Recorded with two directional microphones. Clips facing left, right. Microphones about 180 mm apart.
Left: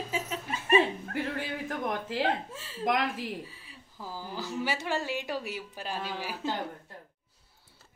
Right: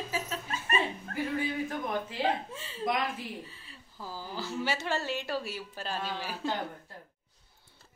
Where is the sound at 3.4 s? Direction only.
10° left (ahead or behind).